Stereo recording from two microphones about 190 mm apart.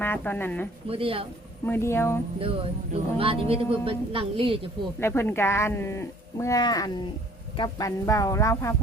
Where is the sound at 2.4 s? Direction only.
30° right (ahead or behind).